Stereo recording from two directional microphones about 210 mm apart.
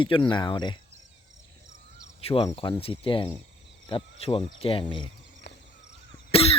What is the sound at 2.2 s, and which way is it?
Cricket, 25° left (ahead or behind).